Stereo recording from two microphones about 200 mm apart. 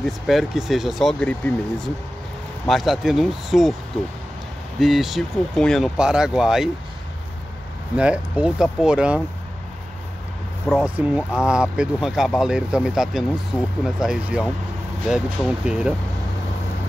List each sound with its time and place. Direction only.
0.0 s speech: centre (ahead or behind)
4.7 s speech: centre (ahead or behind)
7.9 s speech: 5° right (ahead or behind)
10.7 s speech: centre (ahead or behind)